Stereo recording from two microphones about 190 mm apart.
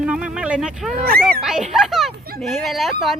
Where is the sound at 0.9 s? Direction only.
50° right (ahead or behind).